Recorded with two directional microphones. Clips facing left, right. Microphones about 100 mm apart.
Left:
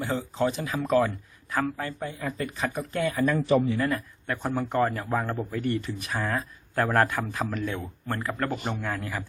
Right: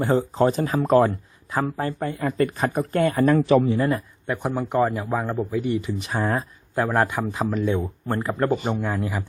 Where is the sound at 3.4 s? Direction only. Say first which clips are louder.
Right 4 dB; 90° right.